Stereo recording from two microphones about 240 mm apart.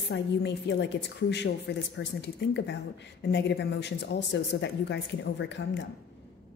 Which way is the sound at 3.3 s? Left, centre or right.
Left.